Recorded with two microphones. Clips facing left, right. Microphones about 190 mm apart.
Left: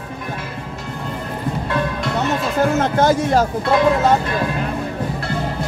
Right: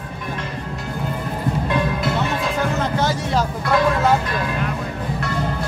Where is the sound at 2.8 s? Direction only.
50° left (ahead or behind).